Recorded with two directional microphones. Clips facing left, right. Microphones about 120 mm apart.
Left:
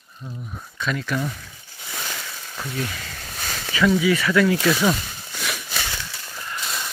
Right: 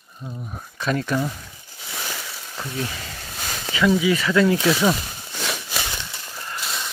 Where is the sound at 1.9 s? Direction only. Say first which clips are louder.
Even; 5° right (ahead or behind).